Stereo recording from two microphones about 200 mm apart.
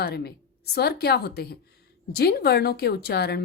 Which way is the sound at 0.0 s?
55° left (ahead or behind).